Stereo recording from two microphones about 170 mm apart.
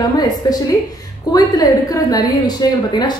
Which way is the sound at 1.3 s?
20° left (ahead or behind).